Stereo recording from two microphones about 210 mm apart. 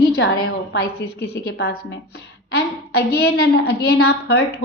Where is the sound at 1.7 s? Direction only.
90° left.